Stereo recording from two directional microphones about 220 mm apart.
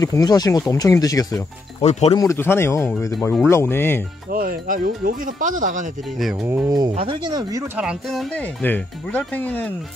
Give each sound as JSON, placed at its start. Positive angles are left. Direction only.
{"t": 0.0, "sound": "speech", "side_deg": 15}
{"t": 1.8, "sound": "speech", "side_deg": 30}
{"t": 2.1, "sound": "speech", "side_deg": 10}
{"t": 4.3, "sound": "speech", "side_deg": -40}
{"t": 6.1, "sound": "speech", "side_deg": -5}
{"t": 7.7, "sound": "speech", "side_deg": -5}